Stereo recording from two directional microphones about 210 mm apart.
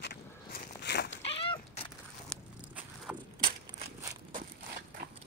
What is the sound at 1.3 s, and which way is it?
Cat, 25° left (ahead or behind).